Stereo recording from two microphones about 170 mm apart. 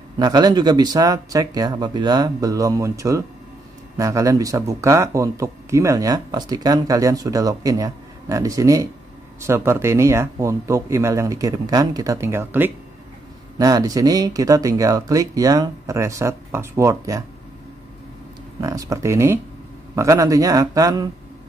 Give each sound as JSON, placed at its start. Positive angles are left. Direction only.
{"t": 0.2, "sound": "speech", "side_deg": -25}
{"t": 18.6, "sound": "speech", "side_deg": -20}